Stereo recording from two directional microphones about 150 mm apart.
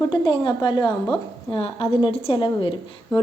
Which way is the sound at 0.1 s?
30° left (ahead or behind).